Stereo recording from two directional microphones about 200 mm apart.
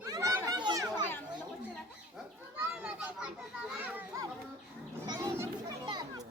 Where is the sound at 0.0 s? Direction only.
15° right (ahead or behind).